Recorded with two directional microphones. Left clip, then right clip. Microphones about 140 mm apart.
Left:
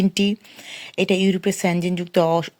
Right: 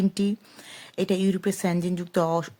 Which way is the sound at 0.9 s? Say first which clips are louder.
Left 6 dB; 5° left (ahead or behind).